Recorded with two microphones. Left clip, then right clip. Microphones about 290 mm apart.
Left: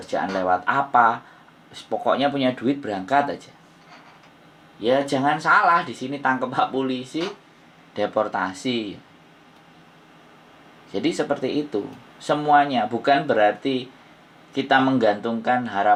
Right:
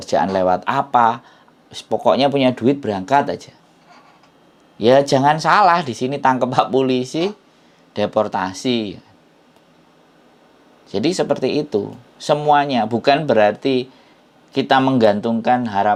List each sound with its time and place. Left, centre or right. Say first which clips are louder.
0.1 s speech: right 6 dB; right
2.0 s speech: right 6 dB; right
4.8 s speech: right 8 dB; right
7.9 s speech: right 4 dB; right
11.2 s speech: right 5 dB; right